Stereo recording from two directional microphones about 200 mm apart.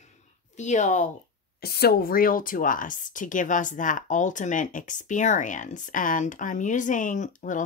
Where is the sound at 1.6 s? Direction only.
50° left (ahead or behind).